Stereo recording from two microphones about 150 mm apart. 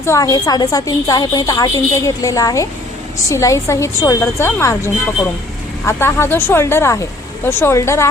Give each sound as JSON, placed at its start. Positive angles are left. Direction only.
{"t": 0.0, "sound": "a woman's voice", "side_deg": 20}